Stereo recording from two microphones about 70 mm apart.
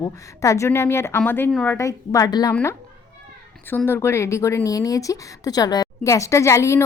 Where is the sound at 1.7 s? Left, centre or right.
Left.